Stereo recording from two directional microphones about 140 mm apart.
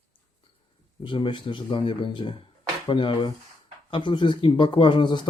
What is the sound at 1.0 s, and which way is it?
Speech, 35° left (ahead or behind).